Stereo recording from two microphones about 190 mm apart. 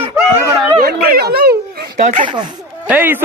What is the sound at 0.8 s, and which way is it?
Speech, 50° right (ahead or behind).